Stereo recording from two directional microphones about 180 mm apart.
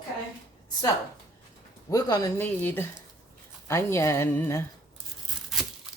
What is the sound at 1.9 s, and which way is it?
Speech, 20° left (ahead or behind).